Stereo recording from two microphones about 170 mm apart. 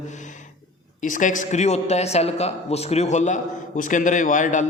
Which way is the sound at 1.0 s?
50° left (ahead or behind).